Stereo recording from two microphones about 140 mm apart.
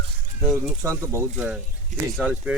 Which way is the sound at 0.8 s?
20° right (ahead or behind).